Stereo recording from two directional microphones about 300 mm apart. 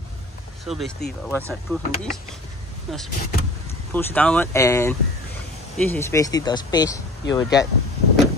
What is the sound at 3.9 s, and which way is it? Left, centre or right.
Speech, centre.